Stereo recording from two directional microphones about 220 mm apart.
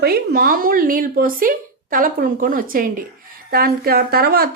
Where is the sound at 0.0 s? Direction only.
40° right (ahead or behind).